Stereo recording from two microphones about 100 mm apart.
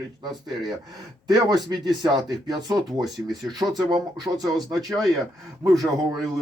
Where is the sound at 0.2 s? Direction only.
45° right (ahead or behind).